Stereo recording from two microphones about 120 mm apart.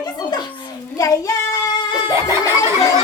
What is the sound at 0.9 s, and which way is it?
Child singing, 30° left (ahead or behind).